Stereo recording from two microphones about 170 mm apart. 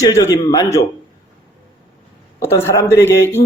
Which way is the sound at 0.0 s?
20° left (ahead or behind).